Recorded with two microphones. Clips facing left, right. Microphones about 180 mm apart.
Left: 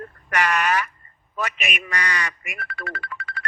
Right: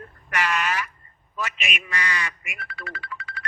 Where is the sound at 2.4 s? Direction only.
45° left (ahead or behind).